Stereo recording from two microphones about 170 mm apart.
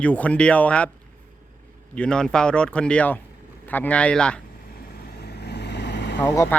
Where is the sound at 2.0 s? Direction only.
5° left (ahead or behind).